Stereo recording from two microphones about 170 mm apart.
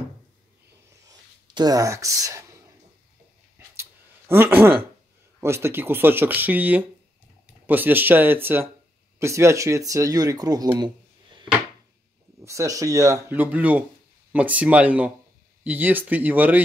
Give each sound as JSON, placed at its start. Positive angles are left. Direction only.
{"t": 1.0, "sound": "a sound", "side_deg": -25}
{"t": 4.3, "sound": "speech", "side_deg": -10}
{"t": 12.4, "sound": "speech", "side_deg": -20}